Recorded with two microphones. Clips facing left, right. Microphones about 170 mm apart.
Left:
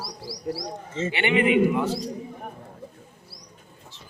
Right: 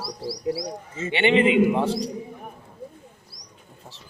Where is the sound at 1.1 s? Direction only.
25° right (ahead or behind).